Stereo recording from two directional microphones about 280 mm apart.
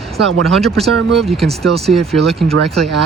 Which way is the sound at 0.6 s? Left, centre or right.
Centre.